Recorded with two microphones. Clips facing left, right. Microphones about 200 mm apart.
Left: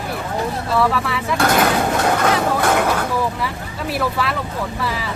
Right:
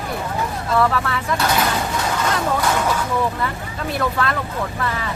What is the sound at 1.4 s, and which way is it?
Speech, 50° left (ahead or behind).